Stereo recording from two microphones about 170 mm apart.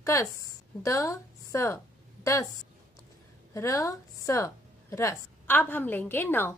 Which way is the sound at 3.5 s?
20° left (ahead or behind).